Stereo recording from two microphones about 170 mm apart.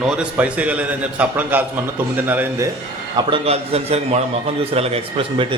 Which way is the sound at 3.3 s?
35° right (ahead or behind).